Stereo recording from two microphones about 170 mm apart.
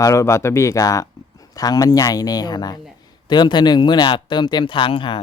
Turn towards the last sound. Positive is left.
turn(degrees=30)  # may be behind; listen again after turning